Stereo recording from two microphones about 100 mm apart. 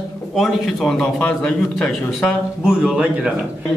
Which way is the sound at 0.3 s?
Centre (ahead or behind).